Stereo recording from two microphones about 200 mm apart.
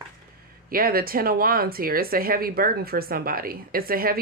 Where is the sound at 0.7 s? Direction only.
45° right (ahead or behind).